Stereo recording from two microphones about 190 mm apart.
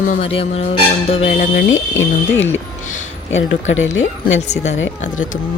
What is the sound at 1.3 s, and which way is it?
Speech, 45° left (ahead or behind).